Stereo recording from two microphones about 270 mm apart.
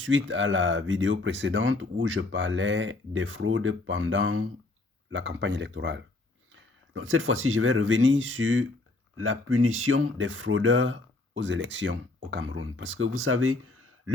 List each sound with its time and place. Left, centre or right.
0.0 s speech: right